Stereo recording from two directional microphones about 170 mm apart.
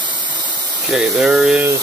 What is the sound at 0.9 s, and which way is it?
Speech, 5° right (ahead or behind).